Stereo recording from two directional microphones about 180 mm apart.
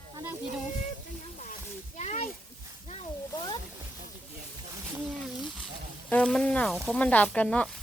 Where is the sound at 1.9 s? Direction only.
40° left (ahead or behind).